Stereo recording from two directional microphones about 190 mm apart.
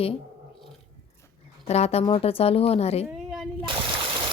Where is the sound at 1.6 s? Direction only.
35° left (ahead or behind).